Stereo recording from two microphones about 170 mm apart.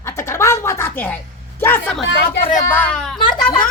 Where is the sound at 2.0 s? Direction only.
90° left.